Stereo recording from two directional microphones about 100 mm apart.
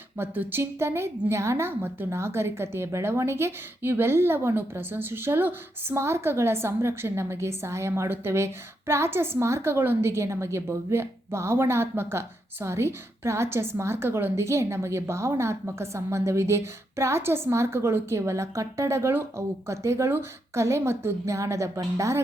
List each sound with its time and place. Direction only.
0.2 s a woman's voice: 25° right (ahead or behind)